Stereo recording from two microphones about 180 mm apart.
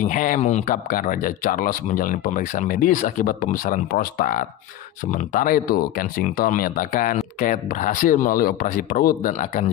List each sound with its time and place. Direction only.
0.0 s speech: 45° left (ahead or behind)